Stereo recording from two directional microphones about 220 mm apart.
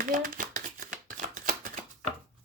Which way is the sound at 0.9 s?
35° right (ahead or behind).